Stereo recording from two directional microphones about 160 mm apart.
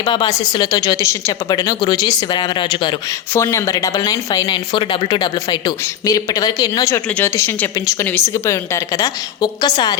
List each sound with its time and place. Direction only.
0.0 s speech: 25° left (ahead or behind)
3.3 s speech: 20° left (ahead or behind)